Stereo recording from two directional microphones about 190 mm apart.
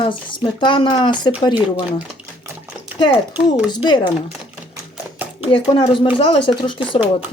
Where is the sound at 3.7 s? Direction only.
25° left (ahead or behind).